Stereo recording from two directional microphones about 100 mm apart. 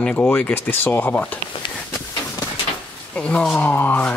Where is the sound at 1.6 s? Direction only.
55° left (ahead or behind).